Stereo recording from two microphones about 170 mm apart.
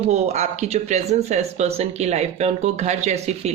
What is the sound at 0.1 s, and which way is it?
Speech, 40° right (ahead or behind).